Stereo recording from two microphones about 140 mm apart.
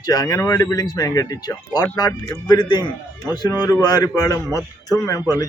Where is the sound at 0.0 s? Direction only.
30° left (ahead or behind).